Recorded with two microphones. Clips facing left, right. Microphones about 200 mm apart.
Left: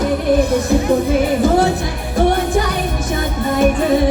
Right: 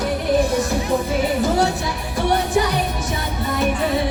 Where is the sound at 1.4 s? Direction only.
55° left (ahead or behind).